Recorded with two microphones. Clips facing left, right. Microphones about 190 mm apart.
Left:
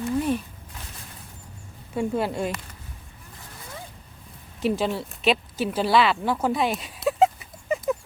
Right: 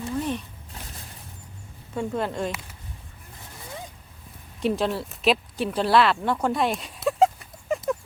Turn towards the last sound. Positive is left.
turn(degrees=0)  # may be behind; listen again after turning